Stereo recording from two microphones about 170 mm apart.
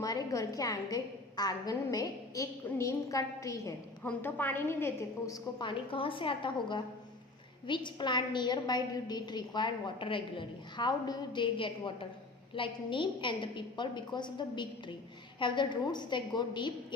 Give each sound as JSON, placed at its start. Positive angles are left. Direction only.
{"t": 0.0, "sound": "a woman's voice", "side_deg": 20}